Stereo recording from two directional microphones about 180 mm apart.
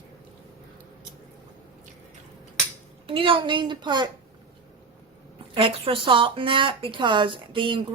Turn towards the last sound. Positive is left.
turn(degrees=-30)  # may be behind; listen again after turning